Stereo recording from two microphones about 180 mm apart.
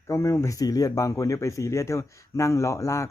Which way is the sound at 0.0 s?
15° left (ahead or behind).